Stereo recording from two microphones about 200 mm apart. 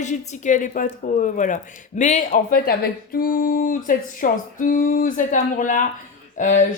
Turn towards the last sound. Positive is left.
turn(degrees=40)  # may be behind; listen again after turning